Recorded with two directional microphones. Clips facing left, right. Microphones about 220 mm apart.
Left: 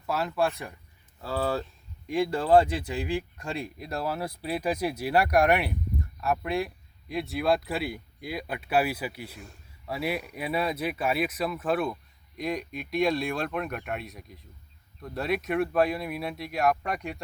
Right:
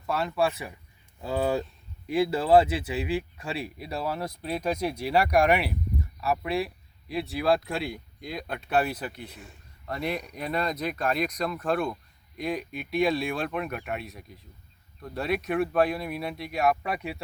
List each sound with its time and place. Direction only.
0.0 s speech: centre (ahead or behind)
1.2 s speech: 15° right (ahead or behind)